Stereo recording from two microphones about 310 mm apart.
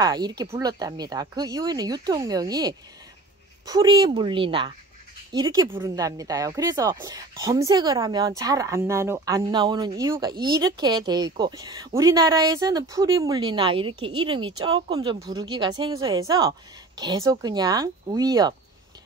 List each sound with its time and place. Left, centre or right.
0.0 s speech: centre